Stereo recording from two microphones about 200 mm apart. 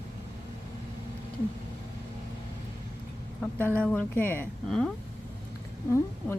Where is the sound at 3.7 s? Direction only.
5° left (ahead or behind).